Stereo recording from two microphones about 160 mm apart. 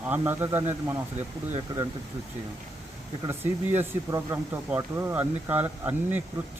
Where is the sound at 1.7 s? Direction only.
25° right (ahead or behind).